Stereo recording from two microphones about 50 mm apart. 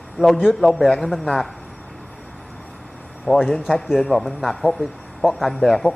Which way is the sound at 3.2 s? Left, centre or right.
Centre.